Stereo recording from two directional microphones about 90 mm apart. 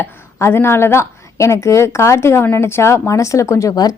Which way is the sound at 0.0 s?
30° left (ahead or behind).